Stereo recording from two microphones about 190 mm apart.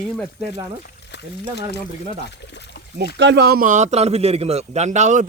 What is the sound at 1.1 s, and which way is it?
Speech, 65° left (ahead or behind).